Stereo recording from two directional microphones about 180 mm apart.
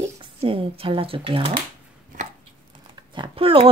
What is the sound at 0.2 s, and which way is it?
Speech, 30° right (ahead or behind).